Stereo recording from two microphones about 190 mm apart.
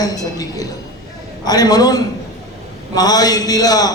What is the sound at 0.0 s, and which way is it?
A man's voice, 20° left (ahead or behind).